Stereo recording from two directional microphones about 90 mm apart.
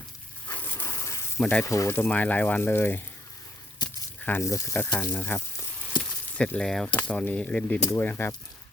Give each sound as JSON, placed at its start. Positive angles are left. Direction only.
{"t": 0.5, "sound": "a sound", "side_deg": 25}
{"t": 1.4, "sound": "speech", "side_deg": 10}
{"t": 1.6, "sound": "speech", "side_deg": 35}
{"t": 3.8, "sound": "a sound", "side_deg": 55}
{"t": 4.2, "sound": "speech", "side_deg": 25}
{"t": 4.5, "sound": "sizzle", "side_deg": 35}
{"t": 4.8, "sound": "speech", "side_deg": 20}
{"t": 6.0, "sound": "sizzle", "side_deg": 15}
{"t": 6.6, "sound": "speech", "side_deg": 5}
{"t": 6.9, "sound": "speech", "side_deg": 20}
{"t": 7.9, "sound": "speech", "side_deg": 25}